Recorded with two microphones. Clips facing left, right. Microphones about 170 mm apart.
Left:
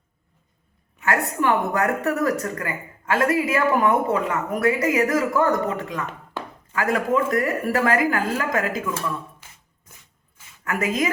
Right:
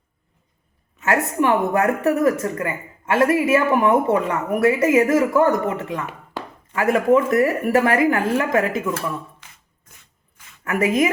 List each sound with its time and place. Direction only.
1.0 s speech: 20° right (ahead or behind)
10.6 s a woman's voice: 25° right (ahead or behind)